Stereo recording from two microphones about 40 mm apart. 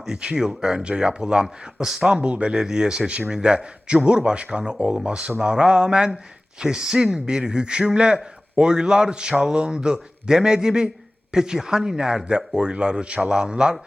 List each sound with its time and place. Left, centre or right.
0.0 s a man's voice: centre
2.6 s a man's voice: centre